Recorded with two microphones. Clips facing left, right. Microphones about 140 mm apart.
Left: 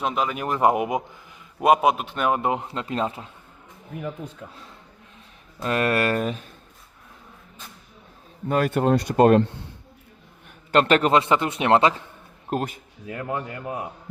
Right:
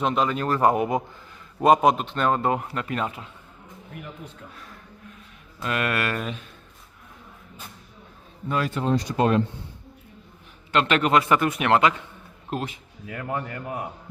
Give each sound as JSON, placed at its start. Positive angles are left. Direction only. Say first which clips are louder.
{"t": 0.0, "sound": "speech", "louder": "right 2 dB", "side_deg": 5}
{"t": 0.4, "sound": "a man's voice", "louder": "left 2 dB", "side_deg": 15}
{"t": 4.5, "sound": "a man's voice", "louder": "right 1 dB", "side_deg": 25}
{"t": 8.4, "sound": "speech", "louder": "left 4 dB", "side_deg": 50}
{"t": 10.7, "sound": "a man's voice", "louder": "left 3 dB", "side_deg": 40}
{"t": 12.5, "sound": "speech", "louder": "left 3 dB", "side_deg": 45}
{"t": 13.1, "sound": "speech", "louder": "left 1 dB", "side_deg": 25}